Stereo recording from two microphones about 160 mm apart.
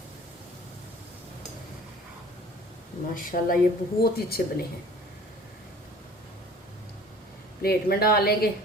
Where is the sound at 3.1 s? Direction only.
60° left (ahead or behind).